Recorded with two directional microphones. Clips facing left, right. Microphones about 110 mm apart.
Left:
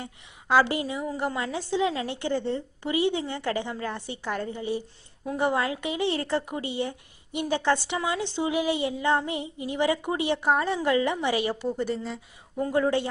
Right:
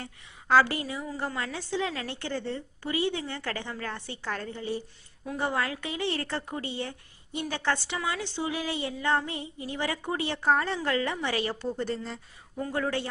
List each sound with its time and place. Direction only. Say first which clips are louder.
0.0 s a woman's voice: left 3 dB; 15° left (ahead or behind)
12.5 s a woman's voice: left 6 dB; 20° left (ahead or behind)